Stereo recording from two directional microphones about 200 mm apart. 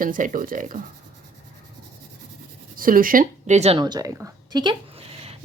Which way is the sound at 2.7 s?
45° right (ahead or behind).